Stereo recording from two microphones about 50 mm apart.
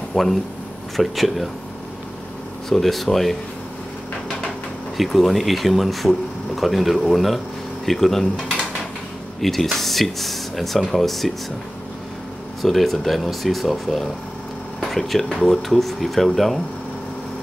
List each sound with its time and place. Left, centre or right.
0.1 s speech: centre
2.7 s speech: centre
4.9 s speech: centre
9.4 s speech: centre
12.6 s speech: centre